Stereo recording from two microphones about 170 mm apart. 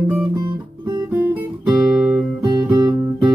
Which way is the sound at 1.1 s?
10° right (ahead or behind).